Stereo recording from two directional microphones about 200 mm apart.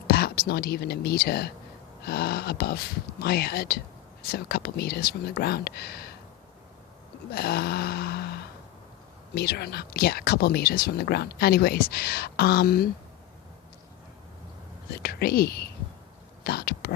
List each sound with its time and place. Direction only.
0.1 s speech: 50° left (ahead or behind)
7.3 s a sound: 50° left (ahead or behind)
9.3 s speech: 50° left (ahead or behind)
14.8 s speech: 50° left (ahead or behind)